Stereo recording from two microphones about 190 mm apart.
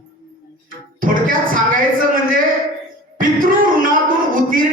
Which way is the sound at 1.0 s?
45° right (ahead or behind).